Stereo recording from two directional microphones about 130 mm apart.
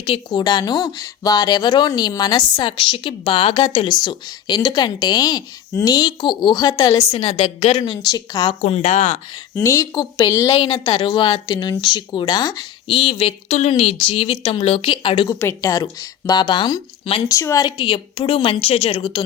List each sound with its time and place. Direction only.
0.0 s a woman's voice: 40° left (ahead or behind)
8.1 s speech: 30° left (ahead or behind)
8.6 s speech: 60° left (ahead or behind)
9.6 s speech: 20° left (ahead or behind)
10.9 s a woman's voice: 40° left (ahead or behind)
13.0 s speech: 45° left (ahead or behind)
15.3 s speech: 20° left (ahead or behind); by 19.2 s 45° left (ahead or behind)